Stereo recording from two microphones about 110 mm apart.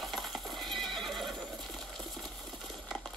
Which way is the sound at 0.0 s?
Centre (ahead or behind).